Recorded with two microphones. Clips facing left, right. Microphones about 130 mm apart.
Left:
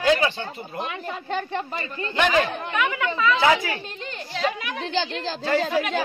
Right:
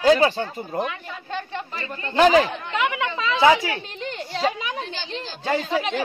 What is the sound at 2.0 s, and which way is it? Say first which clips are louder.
Speech: right 6 dB; 35° right (ahead or behind).